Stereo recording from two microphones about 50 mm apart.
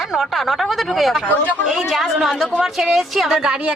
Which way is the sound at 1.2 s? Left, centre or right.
Left.